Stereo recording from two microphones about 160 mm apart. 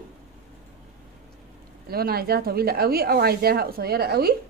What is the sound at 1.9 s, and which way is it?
A woman's voice, 75° right (ahead or behind).